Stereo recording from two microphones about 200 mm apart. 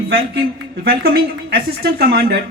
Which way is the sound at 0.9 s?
50° right (ahead or behind).